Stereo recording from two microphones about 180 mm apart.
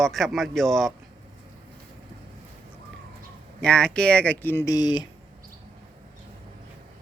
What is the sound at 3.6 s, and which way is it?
Speech, 5° left (ahead or behind).